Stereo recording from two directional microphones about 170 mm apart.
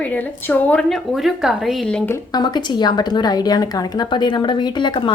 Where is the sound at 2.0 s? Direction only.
25° left (ahead or behind).